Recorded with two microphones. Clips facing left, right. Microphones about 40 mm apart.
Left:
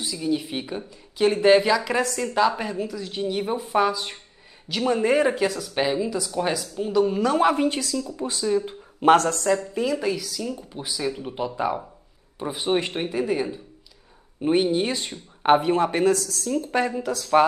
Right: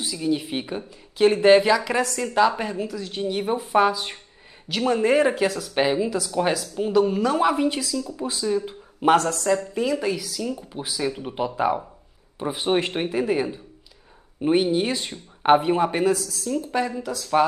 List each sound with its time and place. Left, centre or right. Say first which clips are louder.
0.0 s speech: right 1 dB; centre
2.9 s a woman's voice: right 1 dB; centre
3.2 s a woman's voice: right 1 dB; centre
7.2 s speech: left 1 dB; centre
8.2 s a woman's voice: left 1 dB; centre
8.5 s a sound: left 1 dB; centre
9.6 s a woman's voice: right 1 dB; centre
16.4 s a woman's voice: left 1 dB; centre